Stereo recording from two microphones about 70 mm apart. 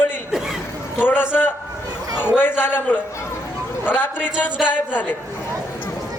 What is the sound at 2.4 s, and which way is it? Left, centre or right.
A man's voice, left.